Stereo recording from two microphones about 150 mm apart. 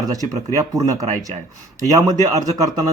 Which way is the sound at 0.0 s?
25° right (ahead or behind).